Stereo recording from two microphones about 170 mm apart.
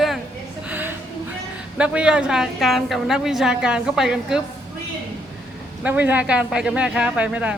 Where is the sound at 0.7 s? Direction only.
10° right (ahead or behind).